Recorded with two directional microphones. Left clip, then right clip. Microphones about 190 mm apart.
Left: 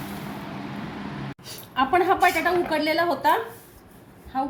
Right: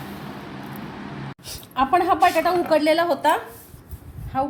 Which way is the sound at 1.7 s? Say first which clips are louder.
Right 2 dB; 25° right (ahead or behind).